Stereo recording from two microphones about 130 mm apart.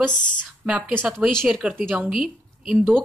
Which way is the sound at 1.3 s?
5° left (ahead or behind).